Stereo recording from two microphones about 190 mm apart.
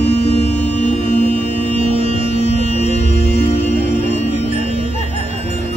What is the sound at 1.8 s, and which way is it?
Music, 30° right (ahead or behind).